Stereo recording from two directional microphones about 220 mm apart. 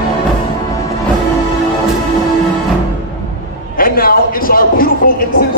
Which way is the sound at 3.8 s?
40° left (ahead or behind).